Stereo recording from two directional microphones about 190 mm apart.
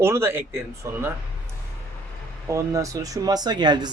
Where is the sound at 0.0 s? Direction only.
15° right (ahead or behind).